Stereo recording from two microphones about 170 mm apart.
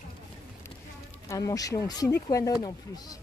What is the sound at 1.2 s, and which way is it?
Speech, 20° left (ahead or behind).